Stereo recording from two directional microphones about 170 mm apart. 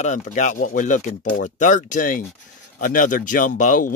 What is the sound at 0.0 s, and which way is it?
Speech, 45° left (ahead or behind).